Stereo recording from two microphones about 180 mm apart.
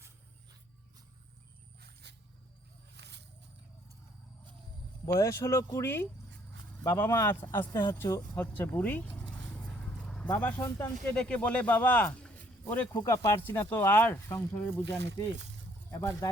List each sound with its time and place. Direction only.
1.8 s wild animals: 65° right (ahead or behind)
2.9 s a sound: 70° right (ahead or behind)
5.2 s speech: 15° left (ahead or behind)
9.6 s vehicle: 5° left (ahead or behind)
11.1 s speech: 5° left (ahead or behind)
14.9 s speech: 75° right (ahead or behind)
15.9 s speech: 15° left (ahead or behind)